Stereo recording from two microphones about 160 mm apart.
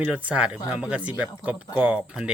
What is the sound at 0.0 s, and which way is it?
Speech, 10° right (ahead or behind).